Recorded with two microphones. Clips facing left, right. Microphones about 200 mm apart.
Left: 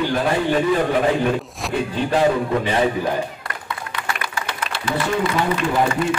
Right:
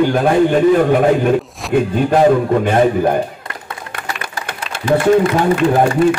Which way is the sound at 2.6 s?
50° right (ahead or behind).